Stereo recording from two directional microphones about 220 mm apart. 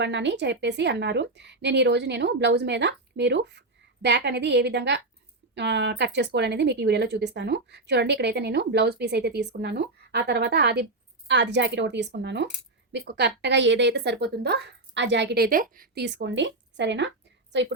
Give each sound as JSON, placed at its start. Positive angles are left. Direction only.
{"t": 0.0, "sound": "a woman's voice", "side_deg": -55}